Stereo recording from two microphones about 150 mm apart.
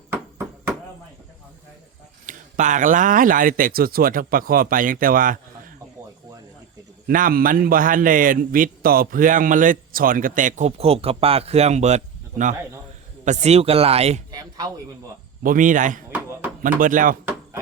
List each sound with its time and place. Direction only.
2.2 s speech: 55° right (ahead or behind)
7.1 s a man's voice: 65° right (ahead or behind); by 14.2 s 40° right (ahead or behind)
14.3 s a sound: 25° right (ahead or behind)
15.4 s a man's voice: 60° right (ahead or behind)
16.1 s a sound: 10° right (ahead or behind)
16.6 s a man's voice: 60° right (ahead or behind)